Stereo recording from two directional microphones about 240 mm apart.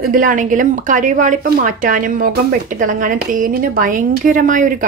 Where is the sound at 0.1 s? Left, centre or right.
Right.